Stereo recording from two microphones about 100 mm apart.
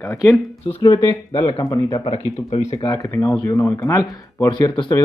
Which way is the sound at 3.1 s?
30° left (ahead or behind).